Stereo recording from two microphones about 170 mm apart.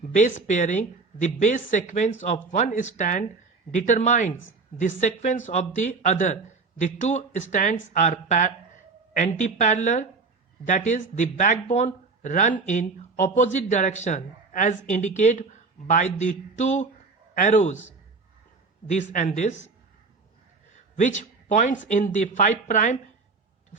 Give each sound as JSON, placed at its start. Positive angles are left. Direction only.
{"t": 0.1, "sound": "speech", "side_deg": 45}
{"t": 19.1, "sound": "speech", "side_deg": 45}
{"t": 20.7, "sound": "a sound", "side_deg": 45}
{"t": 21.8, "sound": "speech", "side_deg": 45}